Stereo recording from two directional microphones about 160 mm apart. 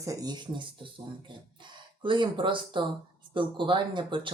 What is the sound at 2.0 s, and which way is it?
Speech, 30° right (ahead or behind).